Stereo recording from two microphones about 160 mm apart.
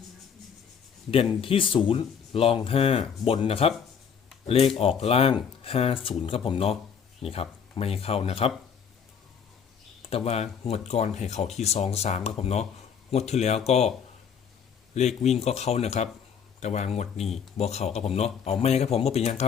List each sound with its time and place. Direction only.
1.1 s speech: 35° left (ahead or behind)
10.0 s speech: 35° left (ahead or behind)
14.9 s speech: 45° left (ahead or behind)